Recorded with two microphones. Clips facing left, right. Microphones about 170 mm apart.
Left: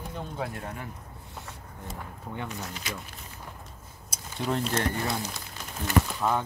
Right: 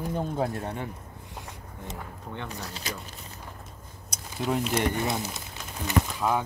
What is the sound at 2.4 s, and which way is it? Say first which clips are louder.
Speech: even; 35° right (ahead or behind).